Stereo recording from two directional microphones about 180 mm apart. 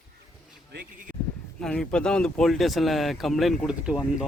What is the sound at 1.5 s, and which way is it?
Speech, 5° left (ahead or behind).